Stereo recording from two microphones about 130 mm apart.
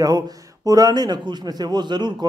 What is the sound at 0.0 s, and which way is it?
A man's voice, 30° right (ahead or behind).